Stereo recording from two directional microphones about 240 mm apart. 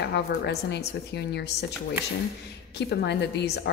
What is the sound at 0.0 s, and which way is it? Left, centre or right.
Speech, left.